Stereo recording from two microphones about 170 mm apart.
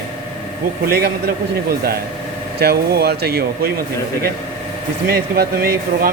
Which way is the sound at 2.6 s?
70° right (ahead or behind).